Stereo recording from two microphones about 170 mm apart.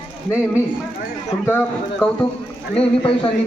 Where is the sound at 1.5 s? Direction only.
10° left (ahead or behind).